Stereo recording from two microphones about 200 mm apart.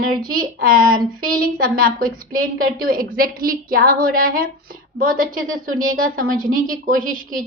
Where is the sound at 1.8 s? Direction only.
45° right (ahead or behind).